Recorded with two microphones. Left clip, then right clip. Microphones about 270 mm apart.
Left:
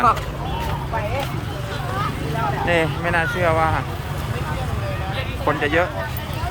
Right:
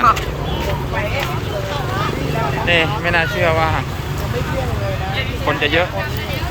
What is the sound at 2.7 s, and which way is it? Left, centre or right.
Speech, centre.